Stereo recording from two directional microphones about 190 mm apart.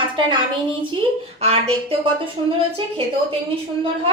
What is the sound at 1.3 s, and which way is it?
Speech, 30° right (ahead or behind).